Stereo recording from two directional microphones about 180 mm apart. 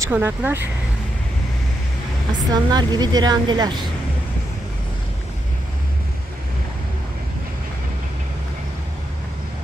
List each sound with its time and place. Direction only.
0.0 s speech: 10° right (ahead or behind)
2.5 s a woman's voice: 25° right (ahead or behind)